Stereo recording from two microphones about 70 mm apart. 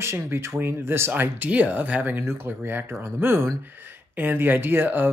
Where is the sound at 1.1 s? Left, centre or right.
Right.